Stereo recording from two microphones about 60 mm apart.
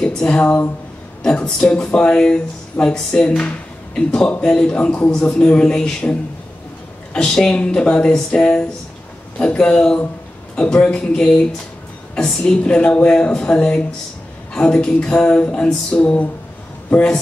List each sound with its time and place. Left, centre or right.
0.0 s a man's voice: centre
7.2 s a woman's voice: centre